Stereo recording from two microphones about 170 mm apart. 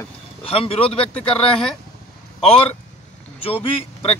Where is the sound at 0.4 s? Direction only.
35° left (ahead or behind).